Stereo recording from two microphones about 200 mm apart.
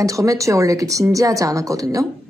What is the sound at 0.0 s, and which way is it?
A woman's voice, 15° right (ahead or behind).